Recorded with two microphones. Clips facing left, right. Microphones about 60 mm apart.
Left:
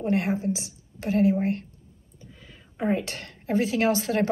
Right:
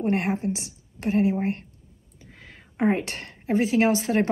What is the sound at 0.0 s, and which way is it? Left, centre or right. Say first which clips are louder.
A woman's voice: right 1 dB; right.